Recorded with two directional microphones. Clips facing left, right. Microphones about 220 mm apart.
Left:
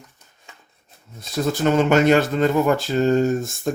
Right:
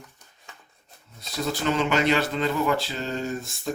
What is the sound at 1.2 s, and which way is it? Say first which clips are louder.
Speech: left 7 dB; 45° left (ahead or behind).